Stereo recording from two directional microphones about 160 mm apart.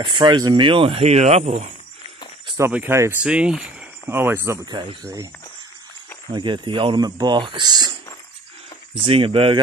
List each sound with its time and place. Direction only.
0.0 s speech: 30° right (ahead or behind)
2.4 s cricket: 20° right (ahead or behind)
2.7 s speech: 15° right (ahead or behind)
6.3 s speech: 30° right (ahead or behind)
9.0 s speech: 35° right (ahead or behind)